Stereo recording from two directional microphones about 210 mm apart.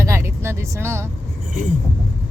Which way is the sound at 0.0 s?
15° right (ahead or behind).